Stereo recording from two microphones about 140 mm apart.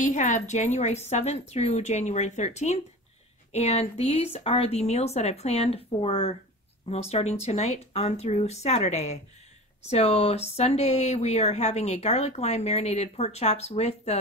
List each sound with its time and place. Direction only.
0.1 s a woman's voice: 60° left (ahead or behind)